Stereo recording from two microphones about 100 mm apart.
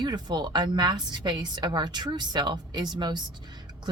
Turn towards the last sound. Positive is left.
turn(degrees=-45)  # may be behind; listen again after turning